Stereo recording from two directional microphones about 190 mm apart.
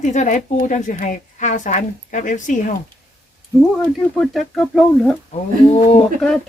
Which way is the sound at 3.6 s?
Centre (ahead or behind).